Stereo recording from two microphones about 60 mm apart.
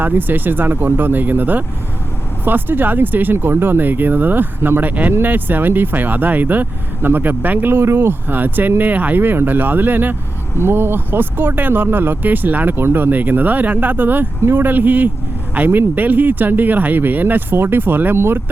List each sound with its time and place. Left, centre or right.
0.0 s speech: right